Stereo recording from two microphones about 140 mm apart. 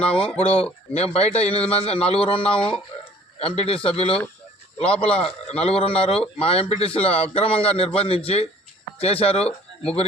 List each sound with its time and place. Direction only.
0.0 s a man's voice: 40° left (ahead or behind)